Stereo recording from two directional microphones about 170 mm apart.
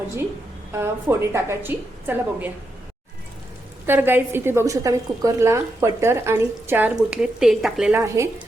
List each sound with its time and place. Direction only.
0.7 s a woman's voice: 15° right (ahead or behind)
3.8 s a woman's voice: 10° right (ahead or behind)
7.9 s a woman's voice: 15° right (ahead or behind)